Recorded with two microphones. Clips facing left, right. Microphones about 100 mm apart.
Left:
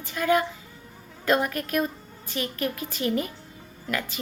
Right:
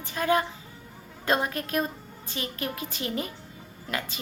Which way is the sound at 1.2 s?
30° right (ahead or behind).